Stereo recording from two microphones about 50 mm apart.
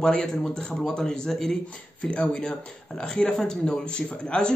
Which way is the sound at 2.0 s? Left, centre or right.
Left.